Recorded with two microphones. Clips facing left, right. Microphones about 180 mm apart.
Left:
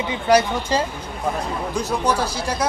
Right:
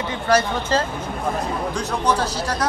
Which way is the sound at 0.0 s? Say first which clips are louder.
Left 2 dB; 15° left (ahead or behind).